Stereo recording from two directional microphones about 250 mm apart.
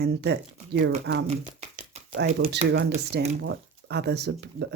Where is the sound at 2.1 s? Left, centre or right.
Right.